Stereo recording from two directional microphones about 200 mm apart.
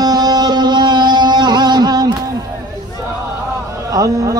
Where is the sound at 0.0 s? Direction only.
20° right (ahead or behind).